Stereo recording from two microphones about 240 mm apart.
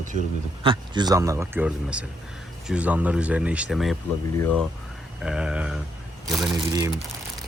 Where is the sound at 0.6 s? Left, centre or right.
Centre.